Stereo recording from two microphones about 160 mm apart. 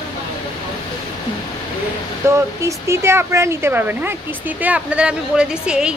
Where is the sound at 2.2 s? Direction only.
15° right (ahead or behind).